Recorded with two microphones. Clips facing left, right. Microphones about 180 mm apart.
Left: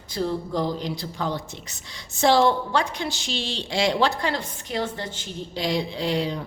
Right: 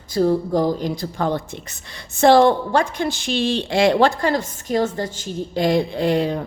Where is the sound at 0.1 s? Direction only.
45° right (ahead or behind).